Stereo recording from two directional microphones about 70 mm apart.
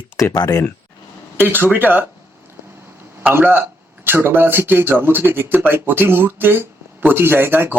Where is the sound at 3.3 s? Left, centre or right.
Right.